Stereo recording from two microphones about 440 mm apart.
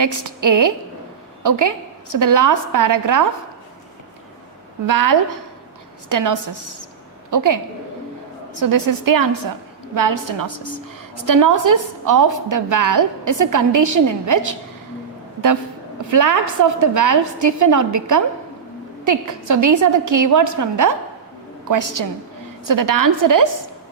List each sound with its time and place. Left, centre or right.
0.0 s a woman's voice: right
4.9 s a woman's voice: right
8.7 s a woman's voice: right
16.0 s a woman's voice: right